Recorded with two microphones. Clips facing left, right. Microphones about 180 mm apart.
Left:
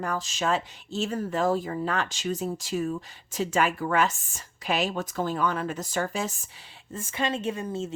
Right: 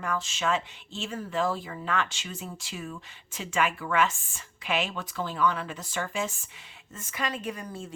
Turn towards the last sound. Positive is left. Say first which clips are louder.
# left 6 dB
turn(degrees=25)  # may be behind; listen again after turning